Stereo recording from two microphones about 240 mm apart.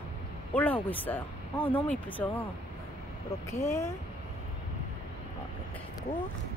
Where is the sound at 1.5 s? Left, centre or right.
Left.